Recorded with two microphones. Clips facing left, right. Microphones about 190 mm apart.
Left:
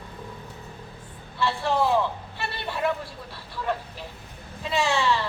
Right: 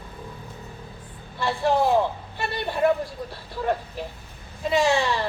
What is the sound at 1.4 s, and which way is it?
Vehicle, 45° right (ahead or behind).